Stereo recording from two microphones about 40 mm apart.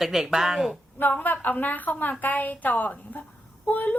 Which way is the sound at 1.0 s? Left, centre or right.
Left.